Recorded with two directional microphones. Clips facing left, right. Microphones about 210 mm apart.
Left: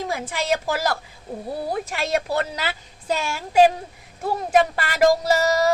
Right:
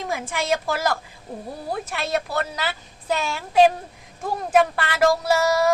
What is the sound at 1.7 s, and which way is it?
Speech, 10° left (ahead or behind).